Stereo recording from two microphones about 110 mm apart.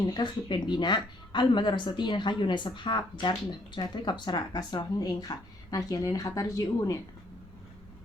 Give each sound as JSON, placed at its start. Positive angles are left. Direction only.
{"t": 0.0, "sound": "speech", "side_deg": 40}